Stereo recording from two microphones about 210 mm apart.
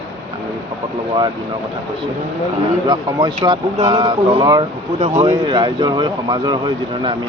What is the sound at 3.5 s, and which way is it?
Speech, 20° right (ahead or behind).